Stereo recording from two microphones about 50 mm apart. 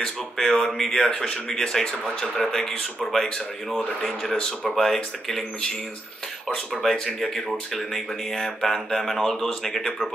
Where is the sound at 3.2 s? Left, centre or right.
Centre.